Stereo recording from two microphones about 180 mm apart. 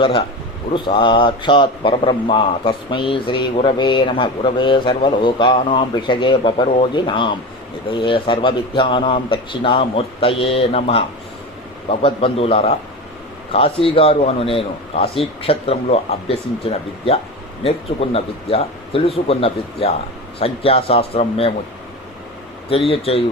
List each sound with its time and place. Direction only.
0.0 s a man's voice: 30° left (ahead or behind)
22.7 s speech: 30° left (ahead or behind)